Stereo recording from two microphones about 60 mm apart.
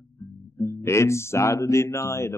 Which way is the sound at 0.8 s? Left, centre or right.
Left.